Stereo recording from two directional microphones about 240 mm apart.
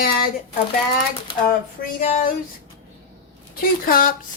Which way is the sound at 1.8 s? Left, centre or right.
Left.